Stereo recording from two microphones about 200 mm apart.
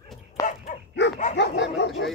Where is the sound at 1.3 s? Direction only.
60° left (ahead or behind).